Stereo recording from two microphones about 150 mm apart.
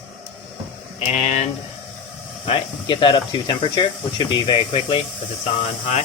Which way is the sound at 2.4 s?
35° left (ahead or behind).